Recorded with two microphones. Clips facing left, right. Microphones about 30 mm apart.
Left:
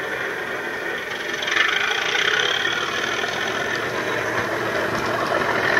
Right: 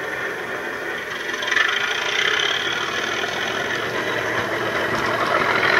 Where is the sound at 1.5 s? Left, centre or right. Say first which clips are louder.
Even; centre.